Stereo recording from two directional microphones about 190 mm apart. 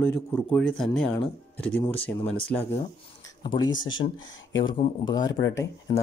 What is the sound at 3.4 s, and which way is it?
Speech, 25° left (ahead or behind).